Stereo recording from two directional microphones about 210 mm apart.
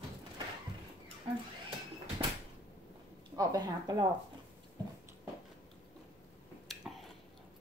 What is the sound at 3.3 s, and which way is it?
Speech, 20° right (ahead or behind).